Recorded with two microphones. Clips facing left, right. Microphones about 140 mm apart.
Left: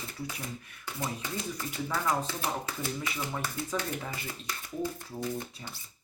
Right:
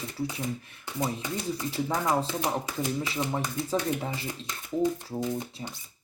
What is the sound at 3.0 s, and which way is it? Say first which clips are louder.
Speech: right 5 dB; 30° right (ahead or behind).